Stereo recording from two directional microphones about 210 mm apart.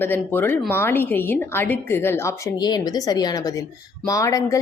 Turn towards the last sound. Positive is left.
turn(degrees=15)  # may be behind; listen again after turning